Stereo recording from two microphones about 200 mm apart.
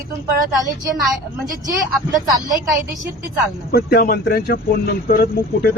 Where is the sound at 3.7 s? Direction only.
50° left (ahead or behind).